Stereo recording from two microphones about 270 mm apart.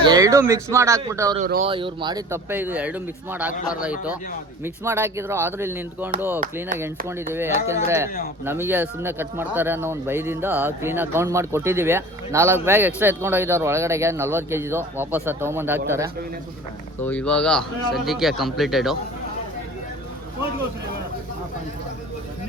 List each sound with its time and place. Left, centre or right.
0.0 s speech: centre
1.4 s speech: right
1.7 s speech: centre
17.0 s a man's voice: centre